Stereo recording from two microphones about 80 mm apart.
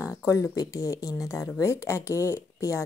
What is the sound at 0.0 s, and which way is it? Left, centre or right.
A woman's voice, left.